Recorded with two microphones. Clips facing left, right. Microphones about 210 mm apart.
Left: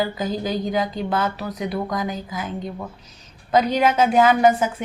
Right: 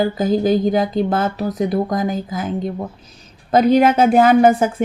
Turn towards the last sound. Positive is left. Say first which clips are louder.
# right 4 dB
turn(degrees=-45)  # may be behind; listen again after turning